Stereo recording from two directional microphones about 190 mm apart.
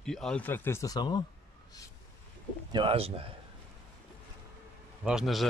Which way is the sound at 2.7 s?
30° right (ahead or behind).